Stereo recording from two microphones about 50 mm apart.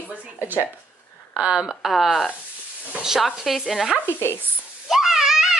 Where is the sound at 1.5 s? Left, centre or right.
Centre.